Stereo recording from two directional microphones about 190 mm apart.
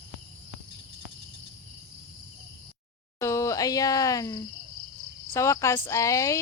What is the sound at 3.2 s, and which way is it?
Speech, 15° left (ahead or behind).